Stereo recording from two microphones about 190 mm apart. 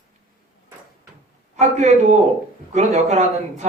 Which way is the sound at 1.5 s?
35° right (ahead or behind).